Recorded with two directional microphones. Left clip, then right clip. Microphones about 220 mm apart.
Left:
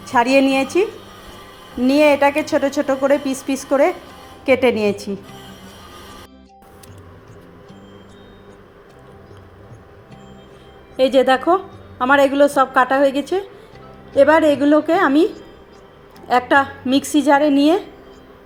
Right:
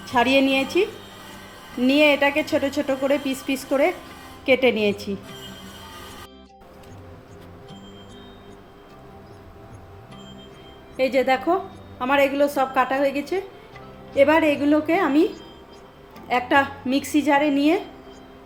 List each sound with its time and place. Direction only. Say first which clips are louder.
0.2 s a woman's voice: left 4 dB; 5° left (ahead or behind)
1.8 s a woman's voice: left 4 dB; 10° left (ahead or behind)
4.8 s a woman's voice: left 3 dB; centre (ahead or behind)
11.0 s a woman's voice: left 6 dB; 25° left (ahead or behind)
16.3 s a woman's voice: left 5 dB; 20° left (ahead or behind)